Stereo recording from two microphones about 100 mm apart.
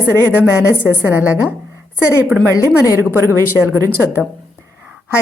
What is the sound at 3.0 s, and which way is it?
Speech, 25° right (ahead or behind).